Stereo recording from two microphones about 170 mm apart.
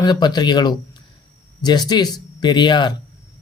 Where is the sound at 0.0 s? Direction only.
25° left (ahead or behind).